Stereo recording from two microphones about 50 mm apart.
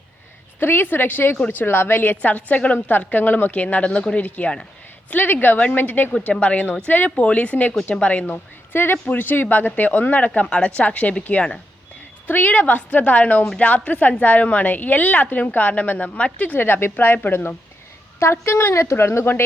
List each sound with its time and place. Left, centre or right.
0.6 s a woman's voice: left
6.3 s speech: left
8.3 s a woman's voice: left
16.6 s a woman's voice: left